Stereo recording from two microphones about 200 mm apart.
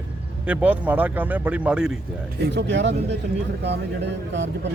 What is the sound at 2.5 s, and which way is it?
Speech, 60° right (ahead or behind).